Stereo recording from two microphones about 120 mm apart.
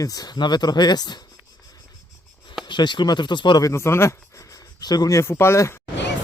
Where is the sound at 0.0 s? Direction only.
30° left (ahead or behind).